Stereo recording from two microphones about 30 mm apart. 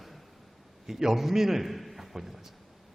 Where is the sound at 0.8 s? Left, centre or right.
Centre.